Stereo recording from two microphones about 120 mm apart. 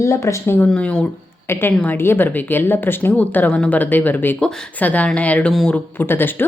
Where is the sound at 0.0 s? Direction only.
25° left (ahead or behind); by 1.0 s 10° left (ahead or behind).